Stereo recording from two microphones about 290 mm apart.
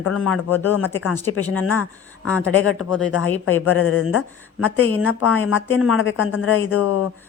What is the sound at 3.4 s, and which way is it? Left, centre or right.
Speech, left.